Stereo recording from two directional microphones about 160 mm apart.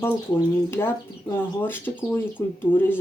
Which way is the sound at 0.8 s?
15° left (ahead or behind).